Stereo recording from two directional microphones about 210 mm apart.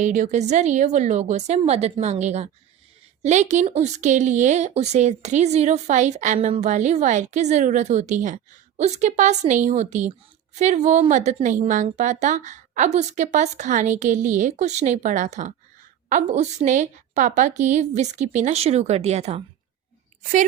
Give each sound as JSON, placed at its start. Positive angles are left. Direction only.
{"t": 0.0, "sound": "speech", "side_deg": -35}